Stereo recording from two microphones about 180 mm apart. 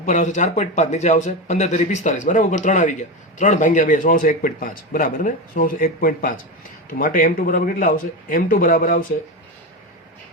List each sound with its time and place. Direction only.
0.0 s speech: 40° left (ahead or behind)